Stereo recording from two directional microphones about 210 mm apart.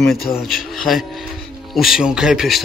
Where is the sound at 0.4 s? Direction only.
Centre (ahead or behind).